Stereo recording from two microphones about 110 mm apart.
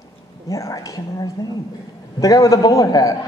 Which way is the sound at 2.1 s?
35° left (ahead or behind).